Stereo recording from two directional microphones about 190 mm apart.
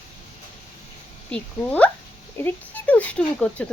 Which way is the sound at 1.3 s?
5° left (ahead or behind).